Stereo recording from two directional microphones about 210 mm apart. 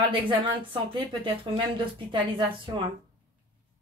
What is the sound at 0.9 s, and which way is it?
Speech, 25° right (ahead or behind).